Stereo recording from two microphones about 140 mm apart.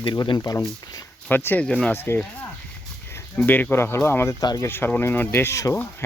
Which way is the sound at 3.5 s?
15° left (ahead or behind).